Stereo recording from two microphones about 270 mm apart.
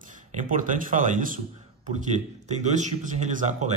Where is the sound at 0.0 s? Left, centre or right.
Right.